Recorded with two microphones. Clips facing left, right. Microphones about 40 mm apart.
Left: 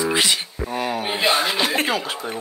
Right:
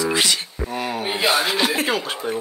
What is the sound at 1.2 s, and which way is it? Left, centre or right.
Chuckle, left.